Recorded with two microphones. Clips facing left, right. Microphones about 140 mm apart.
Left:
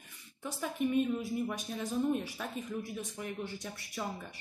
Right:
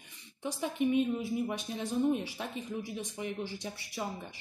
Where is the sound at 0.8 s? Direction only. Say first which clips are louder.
Right 3 dB; 45° left (ahead or behind).